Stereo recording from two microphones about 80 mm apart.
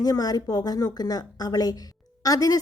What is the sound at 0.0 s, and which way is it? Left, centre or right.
A woman's voice, left.